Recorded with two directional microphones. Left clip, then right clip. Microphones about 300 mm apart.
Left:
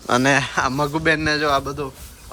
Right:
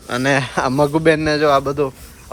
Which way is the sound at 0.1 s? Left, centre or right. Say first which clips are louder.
Even; centre.